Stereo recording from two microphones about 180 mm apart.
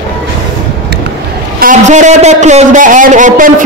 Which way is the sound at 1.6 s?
45° right (ahead or behind).